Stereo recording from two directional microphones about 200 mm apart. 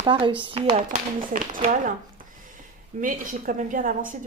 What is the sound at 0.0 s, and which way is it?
Speech, 25° right (ahead or behind).